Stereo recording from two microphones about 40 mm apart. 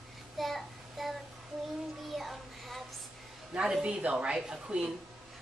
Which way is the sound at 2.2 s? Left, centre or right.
Centre.